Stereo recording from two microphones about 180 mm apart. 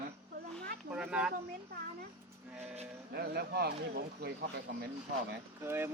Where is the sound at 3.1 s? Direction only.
60° right (ahead or behind).